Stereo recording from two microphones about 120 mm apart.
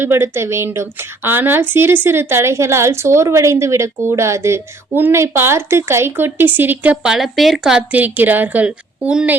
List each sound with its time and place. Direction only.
0.0 s a woman's voice: 20° right (ahead or behind)